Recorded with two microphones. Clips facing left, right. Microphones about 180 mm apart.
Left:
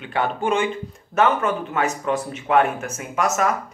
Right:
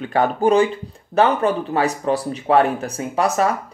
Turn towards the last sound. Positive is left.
turn(degrees=-35)  # may be behind; listen again after turning